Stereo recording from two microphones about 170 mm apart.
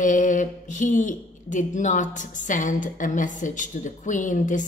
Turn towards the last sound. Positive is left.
turn(degrees=50)  # may be behind; listen again after turning